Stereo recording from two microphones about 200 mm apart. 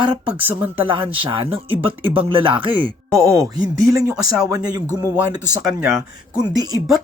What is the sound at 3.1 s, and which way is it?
Speech, 15° right (ahead or behind).